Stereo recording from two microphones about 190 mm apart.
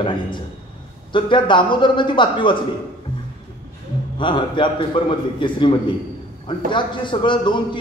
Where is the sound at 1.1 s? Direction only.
25° left (ahead or behind).